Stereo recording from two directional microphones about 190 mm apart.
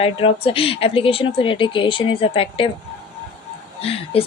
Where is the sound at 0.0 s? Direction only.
30° left (ahead or behind).